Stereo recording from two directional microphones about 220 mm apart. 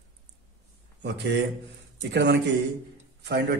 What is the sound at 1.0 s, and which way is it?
Speech, 50° right (ahead or behind).